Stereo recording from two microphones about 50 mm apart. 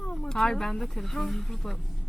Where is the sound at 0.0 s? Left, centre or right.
Left.